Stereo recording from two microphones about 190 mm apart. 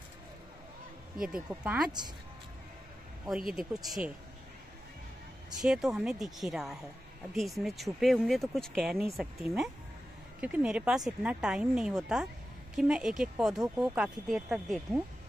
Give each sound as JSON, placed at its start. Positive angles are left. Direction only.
{"t": 1.2, "sound": "speech", "side_deg": -5}
{"t": 1.9, "sound": "a woman's voice", "side_deg": -20}
{"t": 3.3, "sound": "speech", "side_deg": -5}
{"t": 5.5, "sound": "speech", "side_deg": -5}